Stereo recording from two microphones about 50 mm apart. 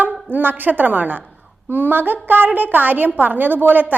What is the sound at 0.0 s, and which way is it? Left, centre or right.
A woman's voice, right.